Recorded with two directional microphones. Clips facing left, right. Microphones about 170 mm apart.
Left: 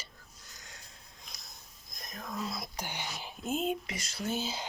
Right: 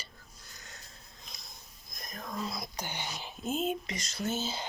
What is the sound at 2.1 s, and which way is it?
Speech, 5° left (ahead or behind).